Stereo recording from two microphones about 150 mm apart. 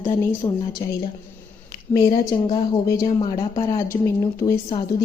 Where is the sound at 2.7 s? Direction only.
20° left (ahead or behind).